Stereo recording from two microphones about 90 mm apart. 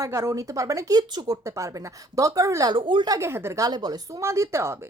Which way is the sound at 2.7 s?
65° right (ahead or behind).